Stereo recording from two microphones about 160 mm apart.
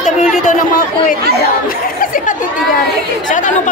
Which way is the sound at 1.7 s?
60° left (ahead or behind).